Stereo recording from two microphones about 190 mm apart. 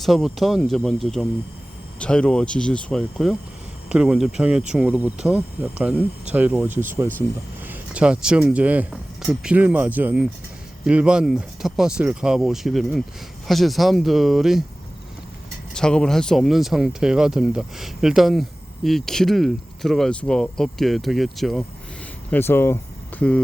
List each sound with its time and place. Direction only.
0.0 s speech: centre (ahead or behind)
15.7 s speech: 5° left (ahead or behind)
22.3 s speech: 10° left (ahead or behind)